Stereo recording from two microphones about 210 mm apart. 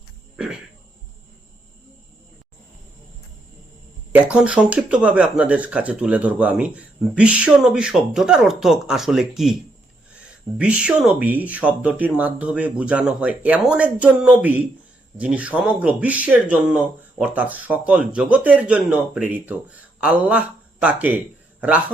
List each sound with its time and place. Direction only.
4.1 s speech: 5° right (ahead or behind)
10.6 s speech: 5° right (ahead or behind)